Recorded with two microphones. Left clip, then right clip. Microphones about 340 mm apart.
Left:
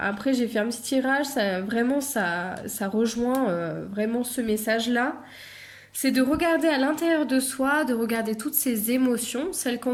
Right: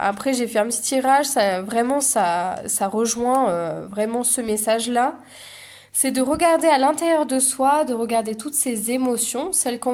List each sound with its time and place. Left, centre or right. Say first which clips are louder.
0.0 s speech: right 4 dB; centre